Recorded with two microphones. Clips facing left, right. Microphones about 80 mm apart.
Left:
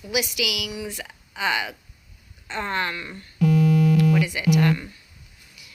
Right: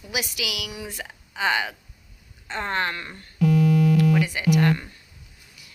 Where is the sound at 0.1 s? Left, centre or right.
Right.